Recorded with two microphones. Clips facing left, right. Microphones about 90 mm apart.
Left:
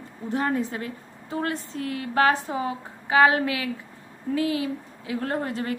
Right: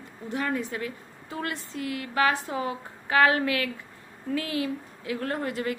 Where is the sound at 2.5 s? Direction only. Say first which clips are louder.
Left 2 dB; 25° left (ahead or behind).